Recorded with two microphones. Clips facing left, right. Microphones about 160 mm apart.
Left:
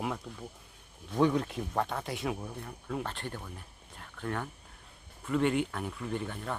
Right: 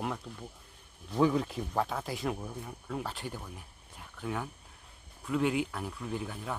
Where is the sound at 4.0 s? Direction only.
5° right (ahead or behind).